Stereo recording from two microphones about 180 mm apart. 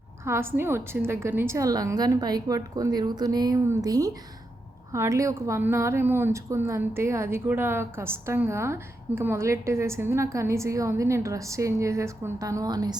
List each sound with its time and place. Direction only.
0.3 s a woman's voice: 15° right (ahead or behind)